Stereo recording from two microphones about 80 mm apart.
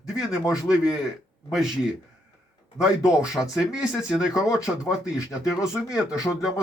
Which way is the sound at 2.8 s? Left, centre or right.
Centre.